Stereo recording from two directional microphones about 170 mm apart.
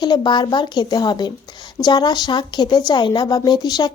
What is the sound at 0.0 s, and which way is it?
Speech, 25° left (ahead or behind).